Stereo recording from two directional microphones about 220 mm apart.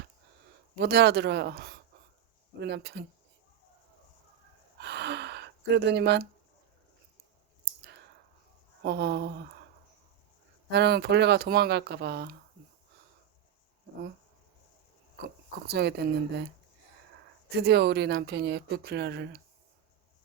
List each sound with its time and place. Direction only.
0.8 s speech: 50° right (ahead or behind)
4.8 s gasp: 50° right (ahead or behind)
8.8 s speech: 50° right (ahead or behind)
10.7 s speech: 50° right (ahead or behind)
15.6 s speech: 45° right (ahead or behind)
17.6 s speech: 50° right (ahead or behind)